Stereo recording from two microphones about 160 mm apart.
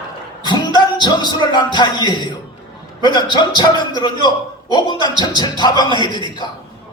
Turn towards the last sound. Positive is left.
turn(degrees=25)  # may be behind; listen again after turning